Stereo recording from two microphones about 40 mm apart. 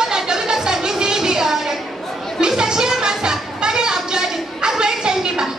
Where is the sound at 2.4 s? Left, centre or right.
Centre.